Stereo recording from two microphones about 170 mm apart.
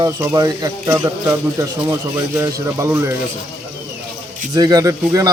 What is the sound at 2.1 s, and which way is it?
Speech, 20° right (ahead or behind).